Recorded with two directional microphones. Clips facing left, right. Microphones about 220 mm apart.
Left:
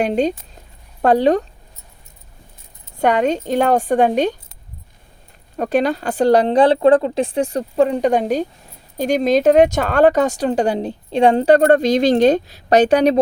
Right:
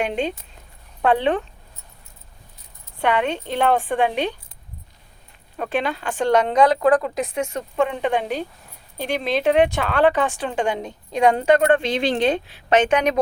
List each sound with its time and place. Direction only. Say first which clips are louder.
0.0 s speech: left 6 dB; 40° left (ahead or behind)
3.0 s a woman's voice: left 5 dB; 40° left (ahead or behind)
5.5 s speech: left 7 dB; 40° left (ahead or behind)